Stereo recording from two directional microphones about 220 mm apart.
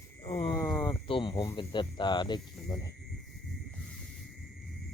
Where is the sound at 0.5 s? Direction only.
10° left (ahead or behind).